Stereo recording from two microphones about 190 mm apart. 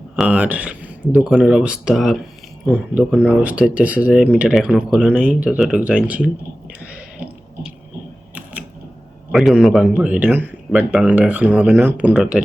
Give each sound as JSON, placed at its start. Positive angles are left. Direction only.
{"t": 0.2, "sound": "a man's voice", "side_deg": -5}
{"t": 3.1, "sound": "speech", "side_deg": 10}
{"t": 3.4, "sound": "speech", "side_deg": -5}
{"t": 6.7, "sound": "a sound", "side_deg": -5}
{"t": 9.3, "sound": "a man's voice", "side_deg": 0}